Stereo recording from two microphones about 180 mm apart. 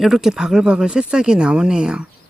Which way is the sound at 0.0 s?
Centre (ahead or behind).